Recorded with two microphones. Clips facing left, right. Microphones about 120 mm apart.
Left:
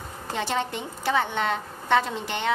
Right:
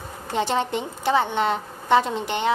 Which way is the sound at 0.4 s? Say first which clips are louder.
Right 5 dB; 20° right (ahead or behind).